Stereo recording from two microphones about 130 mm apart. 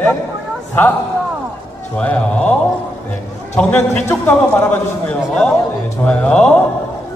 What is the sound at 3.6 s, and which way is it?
A man's voice, 10° left (ahead or behind).